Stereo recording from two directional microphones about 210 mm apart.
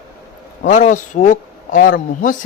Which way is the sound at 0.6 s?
35° left (ahead or behind).